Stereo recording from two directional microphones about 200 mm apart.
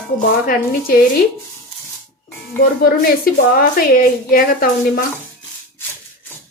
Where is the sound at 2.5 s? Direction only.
50° left (ahead or behind).